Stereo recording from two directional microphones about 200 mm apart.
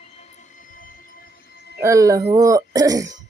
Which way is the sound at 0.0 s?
35° left (ahead or behind).